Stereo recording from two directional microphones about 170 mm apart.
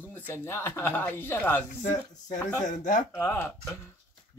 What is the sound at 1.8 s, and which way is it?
Speech, 45° left (ahead or behind).